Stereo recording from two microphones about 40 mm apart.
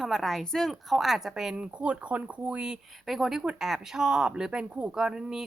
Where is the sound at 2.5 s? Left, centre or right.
Centre.